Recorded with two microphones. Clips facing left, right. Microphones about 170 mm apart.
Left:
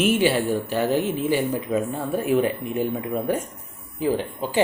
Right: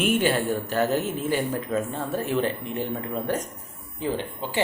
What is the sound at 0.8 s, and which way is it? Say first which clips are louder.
Speech: left 3 dB; 45° right (ahead or behind).